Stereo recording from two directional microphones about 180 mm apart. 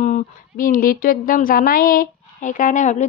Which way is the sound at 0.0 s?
45° left (ahead or behind).